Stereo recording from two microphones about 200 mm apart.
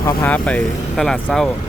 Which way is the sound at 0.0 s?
10° left (ahead or behind).